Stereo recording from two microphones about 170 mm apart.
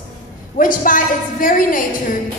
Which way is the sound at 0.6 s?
55° left (ahead or behind).